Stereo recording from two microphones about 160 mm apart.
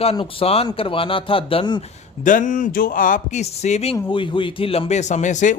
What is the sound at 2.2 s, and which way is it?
Speech, 55° left (ahead or behind).